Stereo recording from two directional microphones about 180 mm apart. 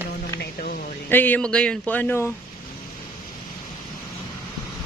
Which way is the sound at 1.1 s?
10° left (ahead or behind).